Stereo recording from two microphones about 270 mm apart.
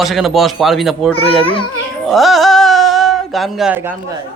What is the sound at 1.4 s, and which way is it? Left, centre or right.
Speech, centre.